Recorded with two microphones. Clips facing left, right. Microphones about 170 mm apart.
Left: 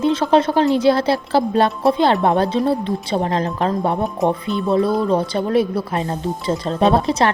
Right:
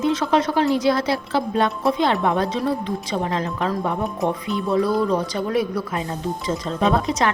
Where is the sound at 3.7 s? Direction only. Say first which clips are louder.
Left 4 dB; 20° left (ahead or behind).